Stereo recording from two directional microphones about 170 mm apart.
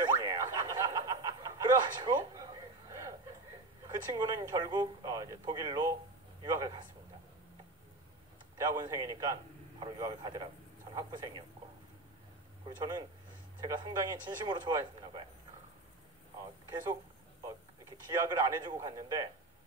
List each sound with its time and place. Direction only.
0.2 s boing: 20° right (ahead or behind)
2.9 s a sound: 20° right (ahead or behind)
3.8 s a man's voice: 20° right (ahead or behind)
8.5 s a man's voice: 20° right (ahead or behind)
12.6 s a man's voice: 20° right (ahead or behind)
17.4 s a man's voice: 20° right (ahead or behind)